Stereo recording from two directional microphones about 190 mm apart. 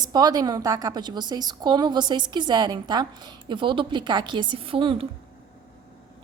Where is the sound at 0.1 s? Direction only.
20° right (ahead or behind).